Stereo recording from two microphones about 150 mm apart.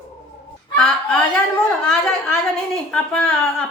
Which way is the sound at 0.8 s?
5° left (ahead or behind).